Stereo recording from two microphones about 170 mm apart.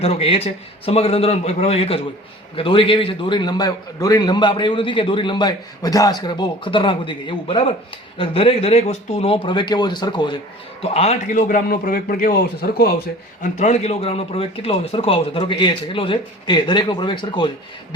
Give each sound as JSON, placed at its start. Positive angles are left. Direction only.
{"t": 0.0, "sound": "a man's voice", "side_deg": 35}
{"t": 10.8, "sound": "a man's voice", "side_deg": 35}
{"t": 11.3, "sound": "a man's voice", "side_deg": 50}
{"t": 13.4, "sound": "a man's voice", "side_deg": 45}